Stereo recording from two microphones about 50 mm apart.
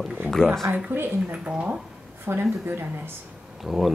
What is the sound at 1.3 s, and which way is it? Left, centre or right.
Speech, centre.